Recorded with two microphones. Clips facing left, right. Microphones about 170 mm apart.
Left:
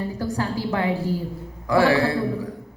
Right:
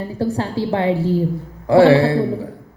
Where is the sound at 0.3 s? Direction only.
30° right (ahead or behind).